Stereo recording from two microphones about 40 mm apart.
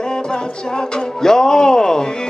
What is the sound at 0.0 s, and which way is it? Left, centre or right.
Music, centre.